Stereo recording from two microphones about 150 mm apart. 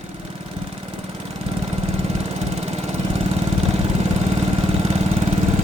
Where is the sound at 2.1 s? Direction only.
45° right (ahead or behind).